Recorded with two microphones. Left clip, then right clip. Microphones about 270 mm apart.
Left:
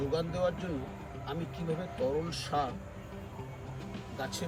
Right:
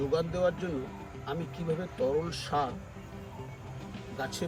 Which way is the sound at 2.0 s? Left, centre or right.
Centre.